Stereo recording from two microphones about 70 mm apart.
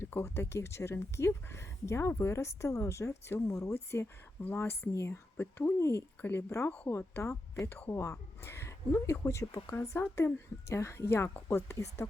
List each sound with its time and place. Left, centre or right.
0.0 s speech: left
4.0 s speech: left
5.4 s speech: left
6.5 s speech: left